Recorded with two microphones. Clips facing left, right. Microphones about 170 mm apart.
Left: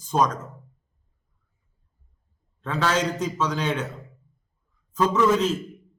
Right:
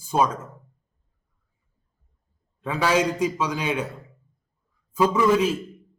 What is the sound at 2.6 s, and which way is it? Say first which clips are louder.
A man's voice: right 2 dB; 10° right (ahead or behind).